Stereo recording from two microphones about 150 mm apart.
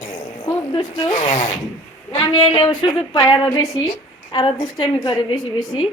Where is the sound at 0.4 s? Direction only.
25° left (ahead or behind).